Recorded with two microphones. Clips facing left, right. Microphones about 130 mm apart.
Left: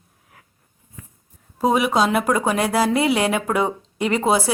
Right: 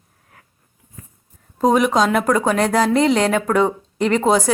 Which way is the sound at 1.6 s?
5° left (ahead or behind).